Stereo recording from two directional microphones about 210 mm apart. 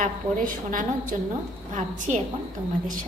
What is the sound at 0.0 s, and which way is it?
A woman's voice, 40° right (ahead or behind).